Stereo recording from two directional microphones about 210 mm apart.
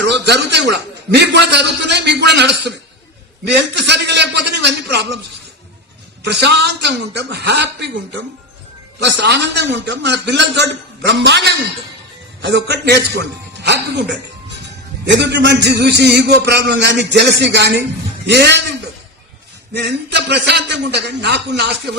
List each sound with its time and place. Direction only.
0.0 s a man's voice: 55° right (ahead or behind)
6.2 s a man's voice: 55° right (ahead or behind)
9.0 s a man's voice: 55° right (ahead or behind)
19.7 s a man's voice: 55° right (ahead or behind)